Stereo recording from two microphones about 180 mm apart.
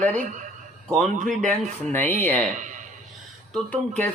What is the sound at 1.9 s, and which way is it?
Speech, 10° left (ahead or behind).